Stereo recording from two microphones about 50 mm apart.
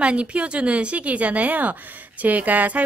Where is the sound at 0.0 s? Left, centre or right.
Right.